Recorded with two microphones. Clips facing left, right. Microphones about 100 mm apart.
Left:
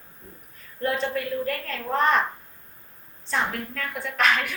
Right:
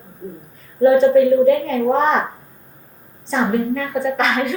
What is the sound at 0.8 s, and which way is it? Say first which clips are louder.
Speech: right 15 dB; 5° right (ahead or behind).